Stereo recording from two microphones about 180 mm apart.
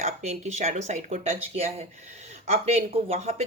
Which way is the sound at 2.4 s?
35° right (ahead or behind).